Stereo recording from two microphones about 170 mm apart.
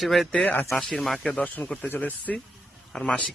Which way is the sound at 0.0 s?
Centre (ahead or behind).